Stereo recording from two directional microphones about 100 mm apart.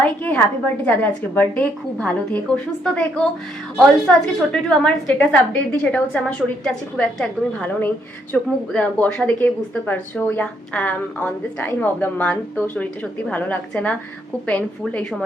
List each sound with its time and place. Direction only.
0.0 s a woman's voice: 15° left (ahead or behind)